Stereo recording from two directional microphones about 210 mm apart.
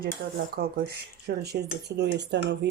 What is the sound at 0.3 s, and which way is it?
Speech, 45° right (ahead or behind).